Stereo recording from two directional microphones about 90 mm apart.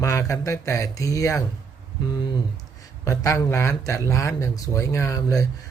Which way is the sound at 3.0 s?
35° left (ahead or behind).